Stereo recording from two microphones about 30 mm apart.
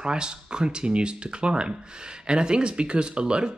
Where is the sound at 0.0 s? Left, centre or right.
Right.